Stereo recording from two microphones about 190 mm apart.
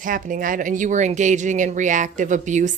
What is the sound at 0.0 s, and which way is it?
A woman's voice, 45° right (ahead or behind).